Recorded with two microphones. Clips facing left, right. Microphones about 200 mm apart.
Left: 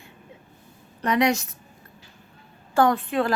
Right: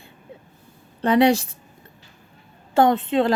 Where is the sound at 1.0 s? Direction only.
30° right (ahead or behind).